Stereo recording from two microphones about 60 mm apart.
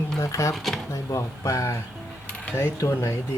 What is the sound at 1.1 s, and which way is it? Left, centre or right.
Speech, left.